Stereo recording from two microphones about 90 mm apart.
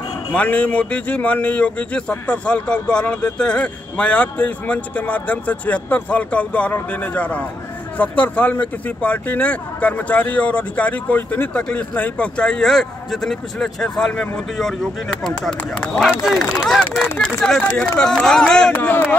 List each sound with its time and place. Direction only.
0.3 s speech: 15° left (ahead or behind)
18.7 s speech: 20° left (ahead or behind)